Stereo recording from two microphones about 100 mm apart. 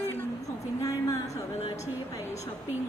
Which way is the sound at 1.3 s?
90° left.